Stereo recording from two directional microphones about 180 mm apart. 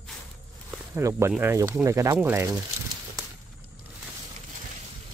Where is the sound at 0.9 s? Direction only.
15° right (ahead or behind).